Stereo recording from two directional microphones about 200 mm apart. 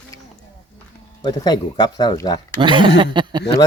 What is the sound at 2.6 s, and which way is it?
Speech, 25° right (ahead or behind).